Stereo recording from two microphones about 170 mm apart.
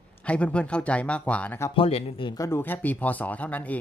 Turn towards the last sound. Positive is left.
turn(degrees=10)  # may be behind; listen again after turning